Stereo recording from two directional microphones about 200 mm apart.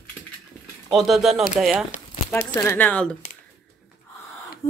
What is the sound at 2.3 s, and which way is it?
Speech, 10° left (ahead or behind).